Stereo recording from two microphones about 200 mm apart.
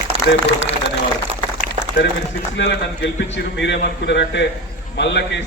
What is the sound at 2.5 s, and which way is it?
A man's voice, 60° left (ahead or behind).